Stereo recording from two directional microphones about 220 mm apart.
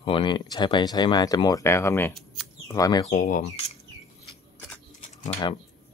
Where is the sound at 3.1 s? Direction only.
35° left (ahead or behind).